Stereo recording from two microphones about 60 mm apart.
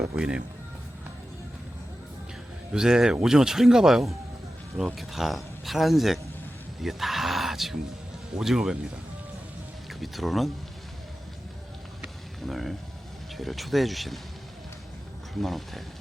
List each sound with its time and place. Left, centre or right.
0.2 s a man's voice: centre
2.7 s a man's voice: centre
6.8 s a sound: centre
8.4 s a man's voice: centre
10.0 s speech: centre
12.5 s speech: centre
15.4 s speech: centre